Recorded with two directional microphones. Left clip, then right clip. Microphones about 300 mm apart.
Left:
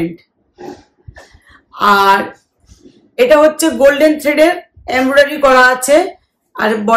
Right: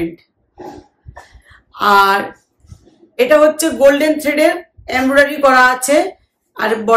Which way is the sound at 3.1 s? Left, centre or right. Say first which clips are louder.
Left 2 dB; centre.